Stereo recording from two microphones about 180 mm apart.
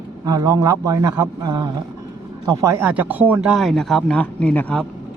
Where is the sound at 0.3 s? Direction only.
20° right (ahead or behind); by 4.9 s 5° left (ahead or behind).